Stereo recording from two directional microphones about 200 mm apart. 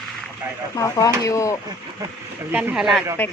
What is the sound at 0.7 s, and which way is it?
Speech, 15° left (ahead or behind).